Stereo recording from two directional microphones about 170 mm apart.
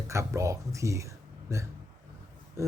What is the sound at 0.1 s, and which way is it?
Speech, 15° right (ahead or behind).